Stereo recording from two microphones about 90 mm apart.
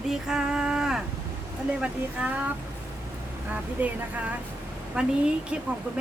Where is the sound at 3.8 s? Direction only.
15° right (ahead or behind).